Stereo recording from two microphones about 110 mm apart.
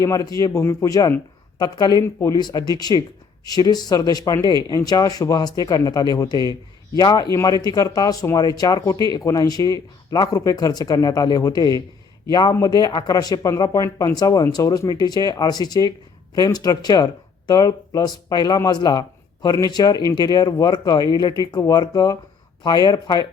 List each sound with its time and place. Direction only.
0.0 s speech: 30° left (ahead or behind)